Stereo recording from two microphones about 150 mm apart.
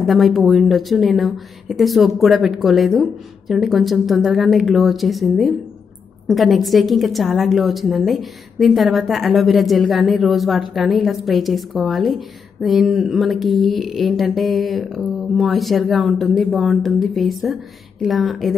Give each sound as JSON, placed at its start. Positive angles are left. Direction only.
{"t": 0.0, "sound": "a woman's voice", "side_deg": 0}